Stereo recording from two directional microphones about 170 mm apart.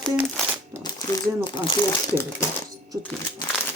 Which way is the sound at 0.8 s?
25° left (ahead or behind).